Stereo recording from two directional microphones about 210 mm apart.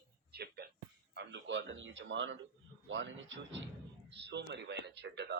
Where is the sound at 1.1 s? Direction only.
55° right (ahead or behind).